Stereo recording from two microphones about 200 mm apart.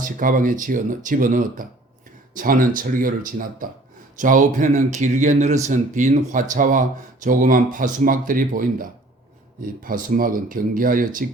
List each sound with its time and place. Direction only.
0.0 s speech: 40° right (ahead or behind)